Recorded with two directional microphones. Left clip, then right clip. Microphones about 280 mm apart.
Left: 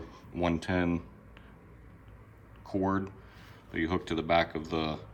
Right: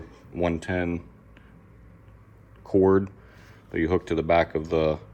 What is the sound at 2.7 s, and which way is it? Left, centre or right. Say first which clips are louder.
Speech: right 11 dB; centre.